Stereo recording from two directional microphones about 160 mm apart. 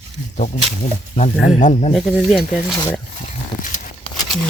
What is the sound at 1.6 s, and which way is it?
Speech, 45° left (ahead or behind).